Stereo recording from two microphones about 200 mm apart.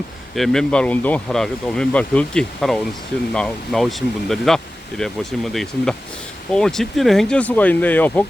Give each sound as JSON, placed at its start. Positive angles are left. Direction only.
{"t": 0.3, "sound": "speech", "side_deg": 0}